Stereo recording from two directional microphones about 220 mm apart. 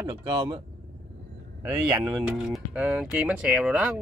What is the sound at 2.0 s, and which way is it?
Speech, 10° right (ahead or behind).